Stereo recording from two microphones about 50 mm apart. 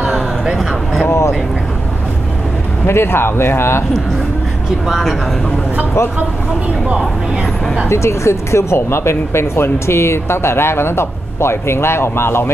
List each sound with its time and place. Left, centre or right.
0.5 s a sound: centre
1.0 s vehicle: left
2.9 s speech: left
7.9 s speech: left